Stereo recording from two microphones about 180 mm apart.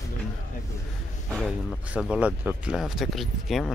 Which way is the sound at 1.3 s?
5° left (ahead or behind).